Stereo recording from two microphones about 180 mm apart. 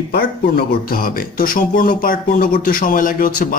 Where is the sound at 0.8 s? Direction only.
55° left (ahead or behind).